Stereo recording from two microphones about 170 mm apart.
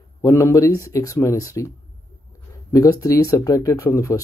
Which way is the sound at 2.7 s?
20° left (ahead or behind).